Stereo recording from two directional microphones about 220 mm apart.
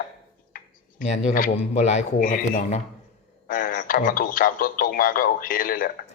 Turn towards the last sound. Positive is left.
turn(degrees=40)  # may be behind; listen again after turning